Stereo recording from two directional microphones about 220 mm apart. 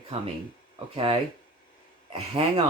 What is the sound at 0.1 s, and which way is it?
Speech, 25° right (ahead or behind).